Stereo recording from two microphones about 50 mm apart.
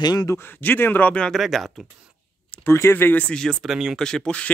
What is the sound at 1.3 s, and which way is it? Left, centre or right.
Speech, centre.